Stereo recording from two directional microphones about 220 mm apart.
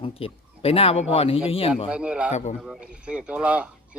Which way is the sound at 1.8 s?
5° right (ahead or behind).